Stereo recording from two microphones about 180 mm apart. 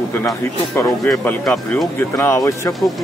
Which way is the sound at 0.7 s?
15° left (ahead or behind).